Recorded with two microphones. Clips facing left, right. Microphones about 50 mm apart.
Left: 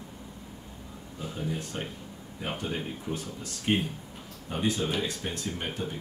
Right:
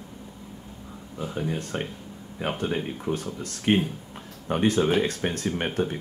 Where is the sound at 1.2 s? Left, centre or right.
Right.